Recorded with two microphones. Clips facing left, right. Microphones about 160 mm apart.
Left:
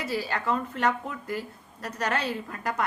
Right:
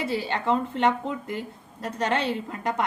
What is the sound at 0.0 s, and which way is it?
A woman's voice, 25° right (ahead or behind).